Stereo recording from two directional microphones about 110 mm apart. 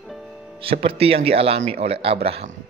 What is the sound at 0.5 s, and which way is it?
A man's voice, 60° right (ahead or behind).